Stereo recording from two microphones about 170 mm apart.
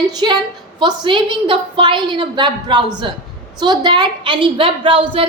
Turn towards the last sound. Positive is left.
turn(degrees=-30)  # may be behind; listen again after turning